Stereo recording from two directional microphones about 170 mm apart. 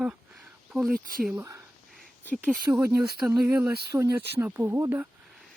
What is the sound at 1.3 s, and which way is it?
Speech, 15° right (ahead or behind).